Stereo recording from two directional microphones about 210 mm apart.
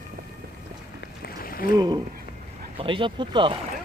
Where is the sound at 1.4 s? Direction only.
45° left (ahead or behind).